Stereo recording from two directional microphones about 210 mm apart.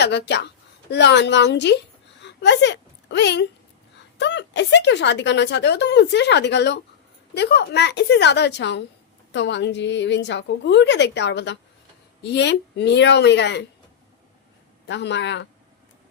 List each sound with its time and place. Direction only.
0.0 s a woman's voice: 55° left (ahead or behind)
14.8 s a woman's voice: 55° left (ahead or behind)